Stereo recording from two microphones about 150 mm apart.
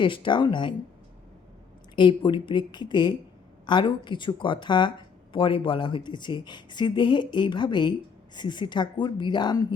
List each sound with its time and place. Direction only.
0.0 s speech: 35° left (ahead or behind)
2.0 s a woman's voice: 30° left (ahead or behind)